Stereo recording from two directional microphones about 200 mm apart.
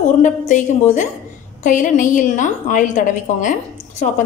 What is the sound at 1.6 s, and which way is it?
A woman's voice, 40° left (ahead or behind).